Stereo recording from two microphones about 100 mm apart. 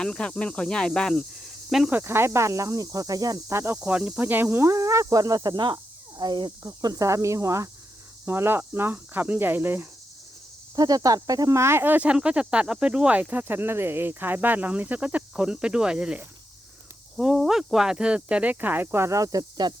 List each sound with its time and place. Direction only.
0.0 s speech: 10° left (ahead or behind)
1.9 s speech: 25° right (ahead or behind)
3.8 s speech: 10° right (ahead or behind)
10.8 s speech: 40° right (ahead or behind)